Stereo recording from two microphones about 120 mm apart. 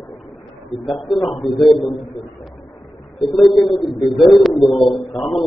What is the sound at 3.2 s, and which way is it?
A man's voice, centre (ahead or behind).